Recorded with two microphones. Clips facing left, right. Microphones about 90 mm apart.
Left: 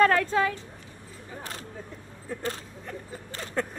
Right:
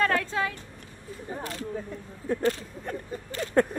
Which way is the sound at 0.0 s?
45° left (ahead or behind).